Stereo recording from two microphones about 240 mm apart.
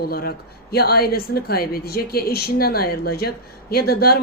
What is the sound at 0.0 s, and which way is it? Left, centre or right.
Speech, left.